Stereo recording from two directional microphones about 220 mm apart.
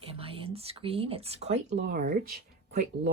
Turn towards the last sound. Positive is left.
turn(degrees=-40)  # may be behind; listen again after turning